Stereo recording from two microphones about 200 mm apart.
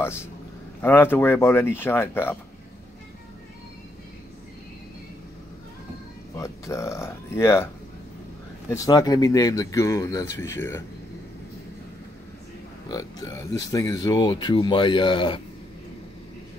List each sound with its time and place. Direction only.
0.0 s speech: 10° left (ahead or behind)
6.3 s speech: 15° left (ahead or behind)
12.8 s speech: 15° left (ahead or behind)